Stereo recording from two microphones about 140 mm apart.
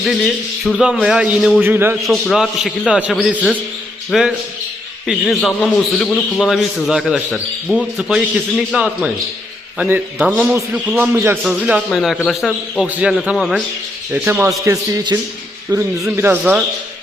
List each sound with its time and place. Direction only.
0.6 s a man's voice: centre (ahead or behind)
2.0 s a man's voice: centre (ahead or behind)
11.4 s a man's voice: 5° right (ahead or behind)
14.1 s a man's voice: 15° right (ahead or behind)
16.1 s a man's voice: 15° right (ahead or behind)
16.4 s a man's voice: 5° right (ahead or behind)